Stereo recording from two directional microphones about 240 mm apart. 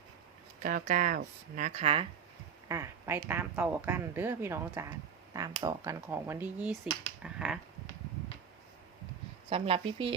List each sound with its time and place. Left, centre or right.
0.6 s speech: right
2.6 s speech: centre
7.2 s finger snapping: centre
9.5 s speech: right